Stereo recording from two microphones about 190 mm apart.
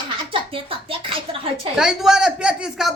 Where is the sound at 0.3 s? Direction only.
30° right (ahead or behind).